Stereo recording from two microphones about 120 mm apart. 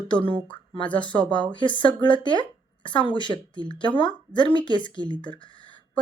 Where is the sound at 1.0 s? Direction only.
40° left (ahead or behind).